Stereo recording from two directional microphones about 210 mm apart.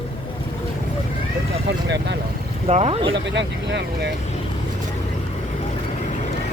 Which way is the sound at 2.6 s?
30° right (ahead or behind).